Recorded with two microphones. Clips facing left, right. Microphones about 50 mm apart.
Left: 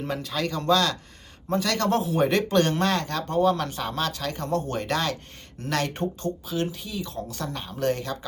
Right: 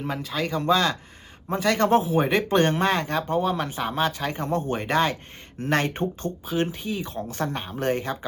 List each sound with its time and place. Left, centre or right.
0.0 s speech: centre; by 8.3 s right